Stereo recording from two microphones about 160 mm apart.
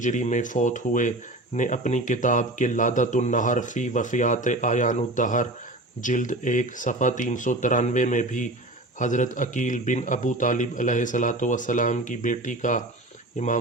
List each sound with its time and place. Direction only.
0.0 s speech: 50° left (ahead or behind)